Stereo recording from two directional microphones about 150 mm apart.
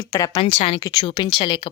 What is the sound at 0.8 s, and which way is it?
Speech, 25° left (ahead or behind).